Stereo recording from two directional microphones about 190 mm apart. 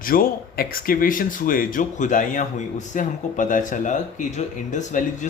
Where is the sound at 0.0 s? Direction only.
50° left (ahead or behind).